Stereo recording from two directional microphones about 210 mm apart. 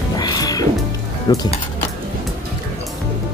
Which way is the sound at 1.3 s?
20° left (ahead or behind).